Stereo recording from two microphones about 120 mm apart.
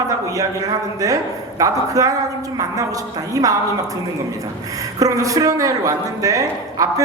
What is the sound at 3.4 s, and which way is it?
Speech, 30° right (ahead or behind).